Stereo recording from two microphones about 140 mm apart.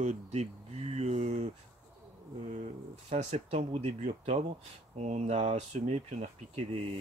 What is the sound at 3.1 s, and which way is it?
Speech, 50° right (ahead or behind).